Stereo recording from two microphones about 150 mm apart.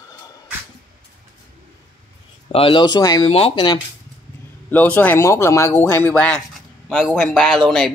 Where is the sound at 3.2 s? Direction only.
40° left (ahead or behind).